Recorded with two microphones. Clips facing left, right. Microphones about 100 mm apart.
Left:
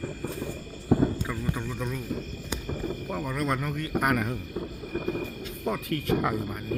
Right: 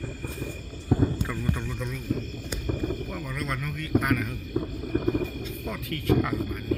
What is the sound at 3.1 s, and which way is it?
A man's voice, 25° left (ahead or behind).